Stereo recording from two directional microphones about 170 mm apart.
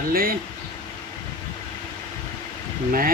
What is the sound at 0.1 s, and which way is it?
Speech, 60° right (ahead or behind).